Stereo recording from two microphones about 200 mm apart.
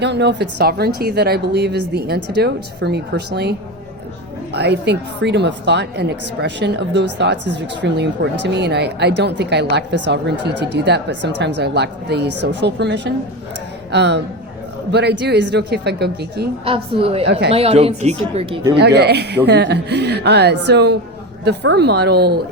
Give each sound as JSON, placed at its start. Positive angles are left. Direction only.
{"t": 0.0, "sound": "a woman's voice", "side_deg": -60}
{"t": 4.5, "sound": "a woman's voice", "side_deg": -55}
{"t": 16.6, "sound": "speech", "side_deg": -25}
{"t": 18.8, "sound": "a woman's voice", "side_deg": -55}